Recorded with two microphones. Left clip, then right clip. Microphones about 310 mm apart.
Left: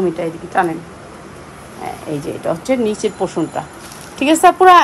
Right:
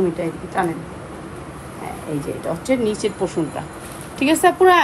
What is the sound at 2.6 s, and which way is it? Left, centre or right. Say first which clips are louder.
A woman's voice: left 1 dB; left.